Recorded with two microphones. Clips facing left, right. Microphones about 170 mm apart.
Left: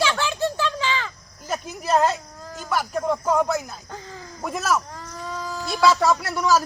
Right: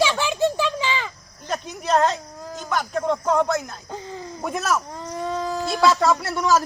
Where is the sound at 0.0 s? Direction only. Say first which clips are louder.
Right 3 dB; 15° right (ahead or behind).